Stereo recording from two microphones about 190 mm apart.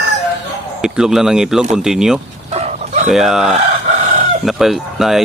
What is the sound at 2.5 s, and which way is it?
Chicken, 35° right (ahead or behind).